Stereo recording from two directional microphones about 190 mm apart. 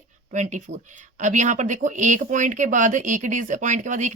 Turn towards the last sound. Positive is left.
turn(degrees=-40)  # may be behind; listen again after turning